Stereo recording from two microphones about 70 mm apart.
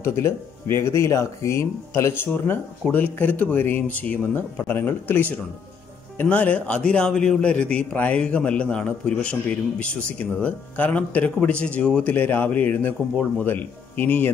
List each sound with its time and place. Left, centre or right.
0.0 s speech: left